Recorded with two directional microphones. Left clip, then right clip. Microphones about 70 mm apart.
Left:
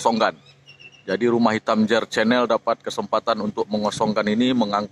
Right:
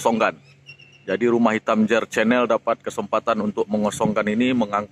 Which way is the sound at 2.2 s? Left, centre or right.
Centre.